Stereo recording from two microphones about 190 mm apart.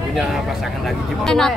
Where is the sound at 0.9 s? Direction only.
5° left (ahead or behind).